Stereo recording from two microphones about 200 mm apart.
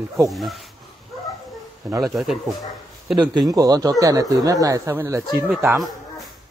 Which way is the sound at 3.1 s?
20° right (ahead or behind).